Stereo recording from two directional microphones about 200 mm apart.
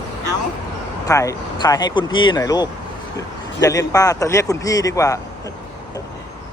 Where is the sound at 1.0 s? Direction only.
15° left (ahead or behind).